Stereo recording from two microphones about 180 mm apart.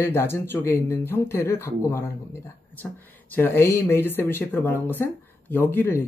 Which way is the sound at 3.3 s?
10° left (ahead or behind).